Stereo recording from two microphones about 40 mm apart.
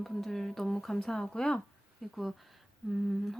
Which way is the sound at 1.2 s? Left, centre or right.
Centre.